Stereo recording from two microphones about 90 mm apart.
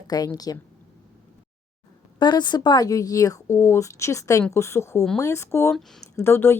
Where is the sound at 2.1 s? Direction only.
55° left (ahead or behind); by 6.6 s 25° left (ahead or behind).